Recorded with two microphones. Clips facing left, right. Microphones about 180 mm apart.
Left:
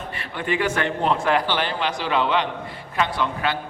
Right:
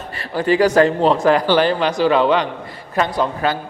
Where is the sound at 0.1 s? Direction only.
35° right (ahead or behind).